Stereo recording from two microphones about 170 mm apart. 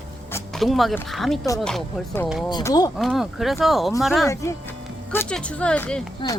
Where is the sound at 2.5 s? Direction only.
25° left (ahead or behind).